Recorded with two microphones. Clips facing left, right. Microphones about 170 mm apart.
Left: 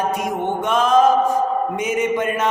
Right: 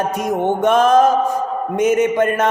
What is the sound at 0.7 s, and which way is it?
Mantra, 50° right (ahead or behind).